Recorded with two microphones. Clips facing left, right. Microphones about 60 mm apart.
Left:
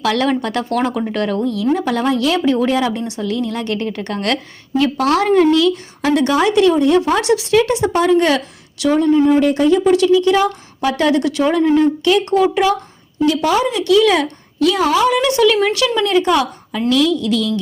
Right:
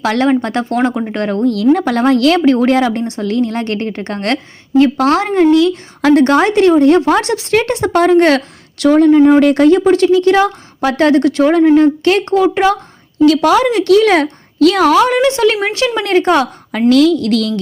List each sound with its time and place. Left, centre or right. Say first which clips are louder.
0.0 s speech: right 4 dB; right
1.5 s a woman's voice: right 5 dB; right
6.0 s a woman's voice: right 6 dB; right
8.8 s a woman's voice: right 5 dB; right
9.8 s a woman's voice: right 2 dB; right
13.2 s a woman's voice: right 6 dB; right
15.2 s speech: right 1 dB; right
16.0 s a woman's voice: right 4 dB; right